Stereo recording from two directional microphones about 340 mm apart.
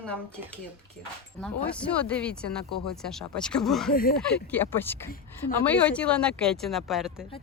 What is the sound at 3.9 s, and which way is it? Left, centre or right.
Speech, left.